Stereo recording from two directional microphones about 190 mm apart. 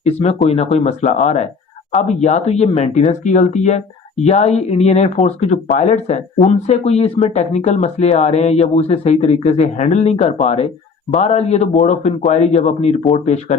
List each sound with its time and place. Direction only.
0.0 s speech: 35° left (ahead or behind)